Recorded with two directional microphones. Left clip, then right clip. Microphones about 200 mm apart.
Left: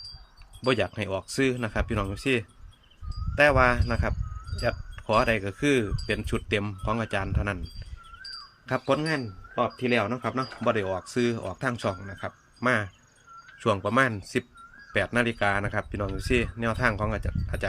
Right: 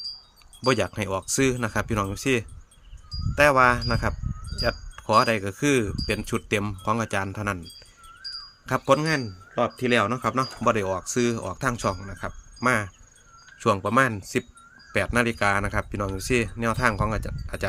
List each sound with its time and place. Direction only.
0.6 s a man's voice: 25° right (ahead or behind)
8.6 s a man's voice: 25° right (ahead or behind)